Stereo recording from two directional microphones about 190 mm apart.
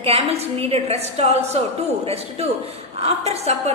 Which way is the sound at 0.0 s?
30° right (ahead or behind).